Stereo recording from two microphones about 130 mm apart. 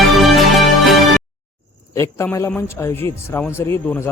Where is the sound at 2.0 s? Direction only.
20° left (ahead or behind).